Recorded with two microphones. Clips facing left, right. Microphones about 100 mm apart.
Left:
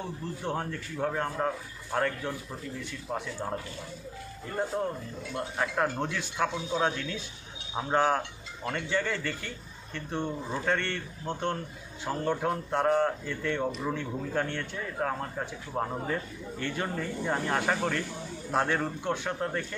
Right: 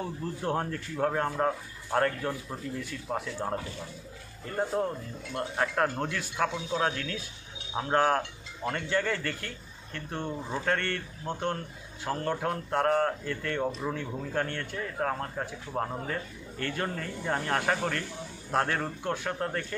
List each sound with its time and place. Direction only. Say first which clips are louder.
0.4 s a man's voice: right 3 dB; centre (ahead or behind)
5.6 s a man's voice: right 1 dB; centre (ahead or behind)